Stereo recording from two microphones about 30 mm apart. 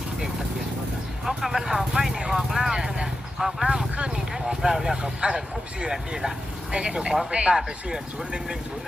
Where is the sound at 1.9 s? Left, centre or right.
Right.